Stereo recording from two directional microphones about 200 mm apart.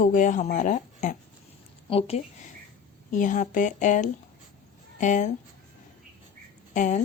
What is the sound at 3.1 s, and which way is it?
A woman's voice, 40° left (ahead or behind).